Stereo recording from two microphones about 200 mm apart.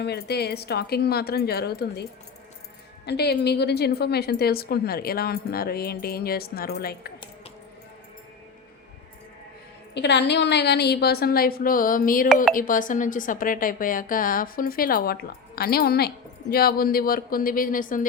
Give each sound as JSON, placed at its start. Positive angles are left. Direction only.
{"t": 0.0, "sound": "a woman's voice", "side_deg": 55}
{"t": 3.1, "sound": "a woman's voice", "side_deg": 55}
{"t": 9.9, "sound": "a woman's voice", "side_deg": 60}